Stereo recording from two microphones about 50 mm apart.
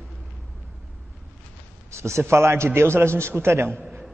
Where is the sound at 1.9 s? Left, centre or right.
Right.